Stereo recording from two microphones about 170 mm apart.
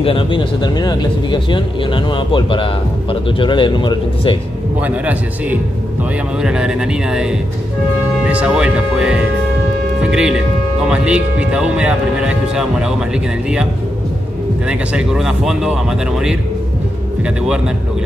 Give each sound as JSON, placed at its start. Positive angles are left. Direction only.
{"t": 0.0, "sound": "speech", "side_deg": 30}
{"t": 4.7, "sound": "speech", "side_deg": -10}
{"t": 14.7, "sound": "speech", "side_deg": -5}